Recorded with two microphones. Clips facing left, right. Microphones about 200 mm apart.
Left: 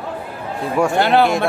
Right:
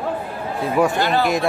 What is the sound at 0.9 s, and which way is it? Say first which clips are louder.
Speech: left 5 dB; 65° left (ahead or behind).